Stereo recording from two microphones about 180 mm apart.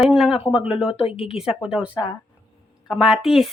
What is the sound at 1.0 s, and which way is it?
Speech, 30° left (ahead or behind).